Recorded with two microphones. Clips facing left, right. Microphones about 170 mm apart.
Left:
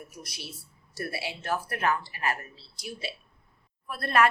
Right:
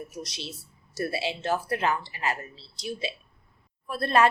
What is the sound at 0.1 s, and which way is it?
A woman's voice, 25° right (ahead or behind).